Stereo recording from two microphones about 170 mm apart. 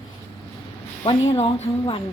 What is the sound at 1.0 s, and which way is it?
Speech, 35° left (ahead or behind).